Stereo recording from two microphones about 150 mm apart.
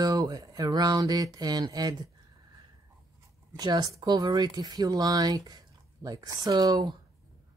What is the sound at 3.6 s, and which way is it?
Speech, 30° right (ahead or behind).